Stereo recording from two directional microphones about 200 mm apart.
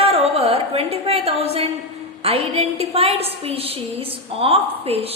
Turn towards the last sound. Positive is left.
turn(degrees=-30)  # may be behind; listen again after turning